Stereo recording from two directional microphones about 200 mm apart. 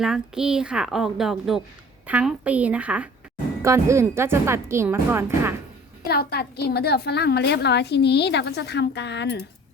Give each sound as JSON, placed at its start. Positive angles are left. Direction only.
{"t": 0.0, "sound": "speech", "side_deg": 0}
{"t": 6.1, "sound": "a woman's voice", "side_deg": 50}